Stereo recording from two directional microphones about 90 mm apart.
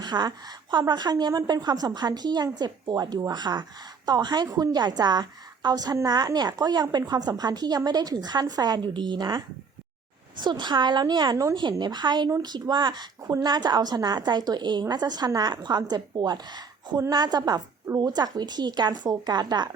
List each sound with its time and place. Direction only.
0.0 s a woman's voice: 50° right (ahead or behind)
10.4 s a woman's voice: 55° right (ahead or behind)